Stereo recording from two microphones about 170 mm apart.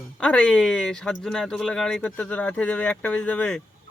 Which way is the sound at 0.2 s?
5° left (ahead or behind).